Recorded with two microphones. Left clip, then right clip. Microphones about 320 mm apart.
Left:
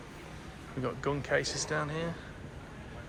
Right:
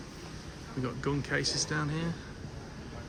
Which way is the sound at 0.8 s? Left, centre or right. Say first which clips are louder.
Left 1 dB; centre.